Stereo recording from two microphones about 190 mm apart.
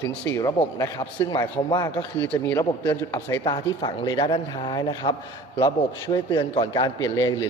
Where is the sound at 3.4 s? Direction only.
25° left (ahead or behind).